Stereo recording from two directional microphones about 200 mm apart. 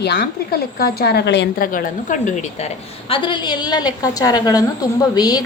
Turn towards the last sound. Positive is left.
turn(degrees=20)  # may be behind; listen again after turning